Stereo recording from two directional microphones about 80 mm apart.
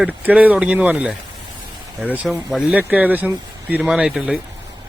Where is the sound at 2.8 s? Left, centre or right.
Right.